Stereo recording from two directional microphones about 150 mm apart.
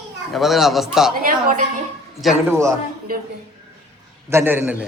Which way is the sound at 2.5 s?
20° right (ahead or behind).